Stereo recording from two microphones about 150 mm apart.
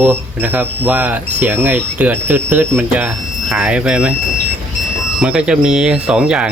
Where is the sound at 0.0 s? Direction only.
10° right (ahead or behind).